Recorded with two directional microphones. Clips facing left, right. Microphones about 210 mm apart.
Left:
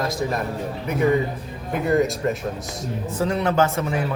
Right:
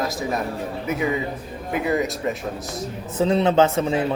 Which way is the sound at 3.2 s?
20° right (ahead or behind).